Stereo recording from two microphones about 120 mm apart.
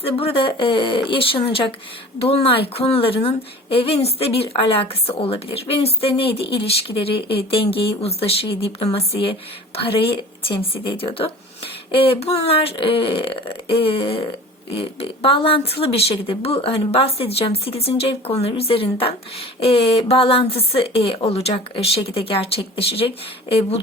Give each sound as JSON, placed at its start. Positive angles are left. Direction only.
{"t": 0.0, "sound": "speech", "side_deg": 50}